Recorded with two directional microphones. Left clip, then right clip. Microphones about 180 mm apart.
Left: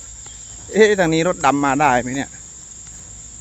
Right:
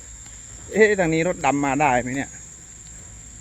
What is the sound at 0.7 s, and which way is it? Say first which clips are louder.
Speech: left 4 dB; 25° left (ahead or behind).